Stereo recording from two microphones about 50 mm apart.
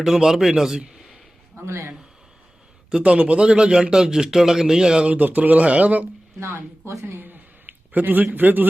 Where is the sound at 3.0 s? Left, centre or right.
Right.